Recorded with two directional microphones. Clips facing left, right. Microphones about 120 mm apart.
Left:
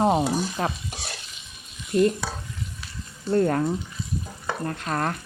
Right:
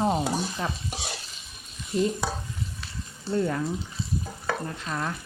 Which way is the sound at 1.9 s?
60° left (ahead or behind).